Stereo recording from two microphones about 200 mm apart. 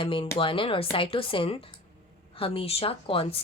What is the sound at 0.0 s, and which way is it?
Speech, 25° left (ahead or behind).